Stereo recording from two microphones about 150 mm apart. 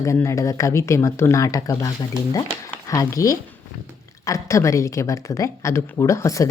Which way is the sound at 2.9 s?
20° left (ahead or behind).